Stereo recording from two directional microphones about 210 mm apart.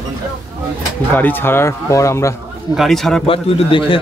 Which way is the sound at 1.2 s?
10° left (ahead or behind).